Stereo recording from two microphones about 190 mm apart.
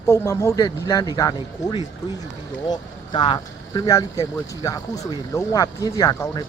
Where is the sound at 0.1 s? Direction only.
15° left (ahead or behind).